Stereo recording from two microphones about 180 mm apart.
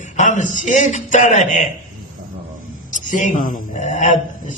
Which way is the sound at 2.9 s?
45° left (ahead or behind).